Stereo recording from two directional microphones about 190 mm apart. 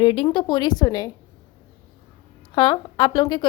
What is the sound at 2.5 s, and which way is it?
Speech, 20° left (ahead or behind).